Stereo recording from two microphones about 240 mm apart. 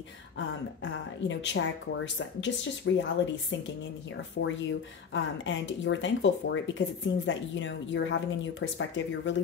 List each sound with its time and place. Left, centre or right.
1.2 s speech: left